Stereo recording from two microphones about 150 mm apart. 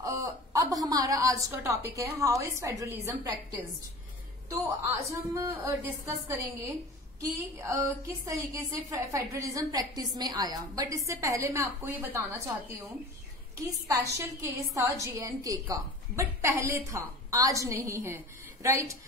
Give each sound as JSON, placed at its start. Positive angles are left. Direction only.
{"t": 0.0, "sound": "a woman's voice", "side_deg": -20}
{"t": 4.5, "sound": "a woman's voice", "side_deg": -20}
{"t": 14.1, "sound": "a woman's voice", "side_deg": -20}